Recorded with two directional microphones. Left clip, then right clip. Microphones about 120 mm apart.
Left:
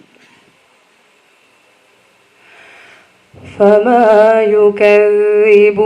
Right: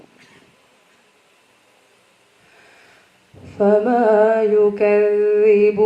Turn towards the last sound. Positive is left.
turn(degrees=40)  # may be behind; listen again after turning